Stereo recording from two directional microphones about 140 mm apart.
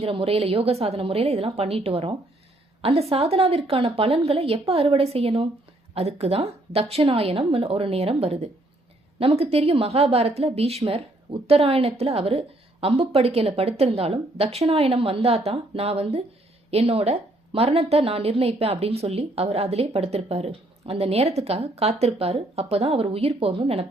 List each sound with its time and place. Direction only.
0.0 s a woman's voice: 40° right (ahead or behind)